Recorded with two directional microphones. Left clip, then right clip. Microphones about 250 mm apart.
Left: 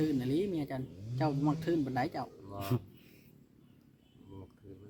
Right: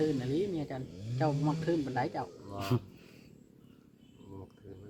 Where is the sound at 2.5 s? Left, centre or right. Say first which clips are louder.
Right 3 dB; centre.